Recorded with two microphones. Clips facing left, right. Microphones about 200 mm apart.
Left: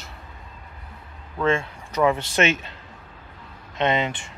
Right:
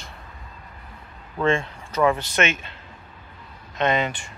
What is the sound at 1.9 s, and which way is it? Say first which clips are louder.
Speech: even; 20° left (ahead or behind).